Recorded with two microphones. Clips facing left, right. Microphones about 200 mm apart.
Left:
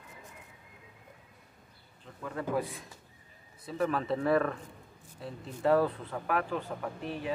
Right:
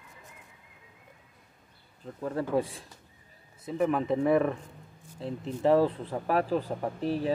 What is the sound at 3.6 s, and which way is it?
Speech, 15° right (ahead or behind).